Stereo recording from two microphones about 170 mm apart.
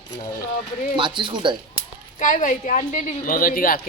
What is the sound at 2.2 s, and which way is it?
Speech, 50° left (ahead or behind).